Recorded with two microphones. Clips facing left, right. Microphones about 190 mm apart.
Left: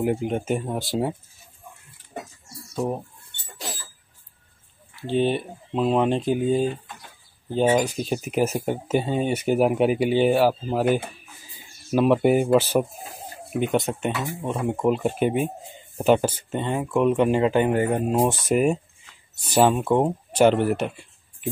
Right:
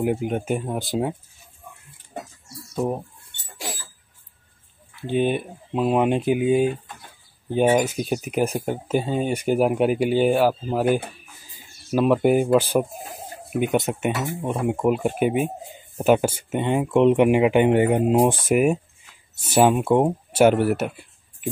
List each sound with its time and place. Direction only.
0.0 s speech: 5° right (ahead or behind)
2.7 s speech: 5° right (ahead or behind)
5.0 s speech: 10° right (ahead or behind)
7.8 s speech: 5° right (ahead or behind)
11.9 s speech: centre (ahead or behind)
13.5 s speech: 5° right (ahead or behind)